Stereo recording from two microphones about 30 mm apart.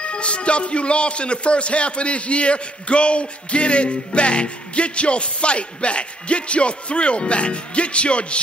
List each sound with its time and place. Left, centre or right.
0.0 s a man's voice: left